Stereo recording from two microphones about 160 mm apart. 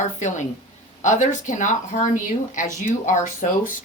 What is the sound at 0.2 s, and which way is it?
Speech, 50° left (ahead or behind).